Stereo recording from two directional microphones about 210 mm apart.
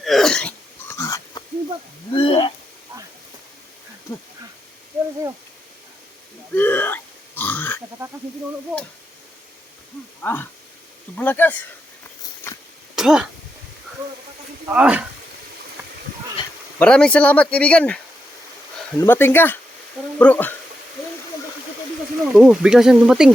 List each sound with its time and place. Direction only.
0.0 s a sound: centre (ahead or behind); by 1.5 s 15° left (ahead or behind)
2.1 s wild animals: 25° left (ahead or behind)
6.5 s burping: 10° left (ahead or behind)
8.0 s a sound: 10° right (ahead or behind)
10.2 s speech: 10° left (ahead or behind)
13.0 s speech: centre (ahead or behind)
14.7 s speech: 5° right (ahead or behind)
16.7 s speech: 5° left (ahead or behind)
22.3 s speech: 5° right (ahead or behind)